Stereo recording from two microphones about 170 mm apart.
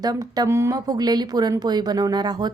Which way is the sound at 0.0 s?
20° right (ahead or behind).